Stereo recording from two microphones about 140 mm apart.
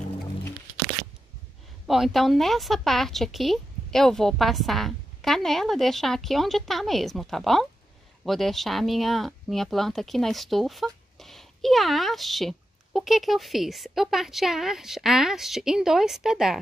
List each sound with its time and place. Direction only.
1.9 s speech: centre (ahead or behind)